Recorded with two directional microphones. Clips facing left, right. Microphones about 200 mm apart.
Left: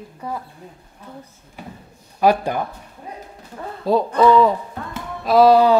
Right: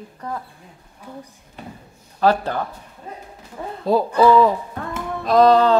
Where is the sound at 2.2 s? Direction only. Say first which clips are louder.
Left 1 dB; 15° left (ahead or behind).